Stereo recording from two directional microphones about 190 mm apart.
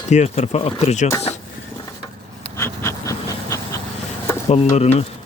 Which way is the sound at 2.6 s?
15° left (ahead or behind).